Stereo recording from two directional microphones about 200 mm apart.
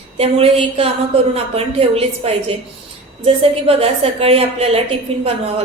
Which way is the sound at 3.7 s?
30° right (ahead or behind).